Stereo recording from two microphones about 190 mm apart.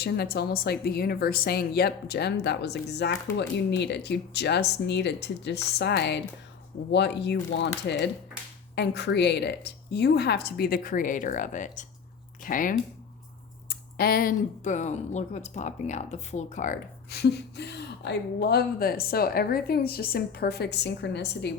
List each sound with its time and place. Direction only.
0.0 s a woman's voice: 55° left (ahead or behind)